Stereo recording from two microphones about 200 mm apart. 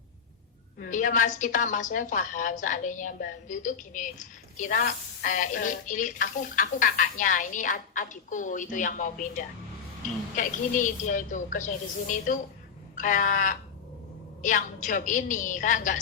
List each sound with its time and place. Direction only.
0.8 s speech: 40° left (ahead or behind)